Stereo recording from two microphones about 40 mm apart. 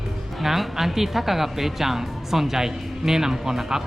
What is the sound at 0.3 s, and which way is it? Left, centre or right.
Speech, centre.